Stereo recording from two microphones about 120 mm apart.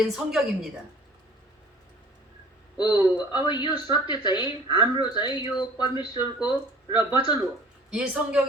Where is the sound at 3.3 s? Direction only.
40° left (ahead or behind).